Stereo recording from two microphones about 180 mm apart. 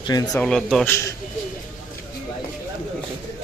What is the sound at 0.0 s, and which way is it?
Speech, 20° left (ahead or behind).